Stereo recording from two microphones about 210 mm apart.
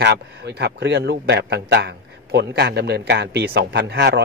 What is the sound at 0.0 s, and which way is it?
A man's voice, 55° right (ahead or behind).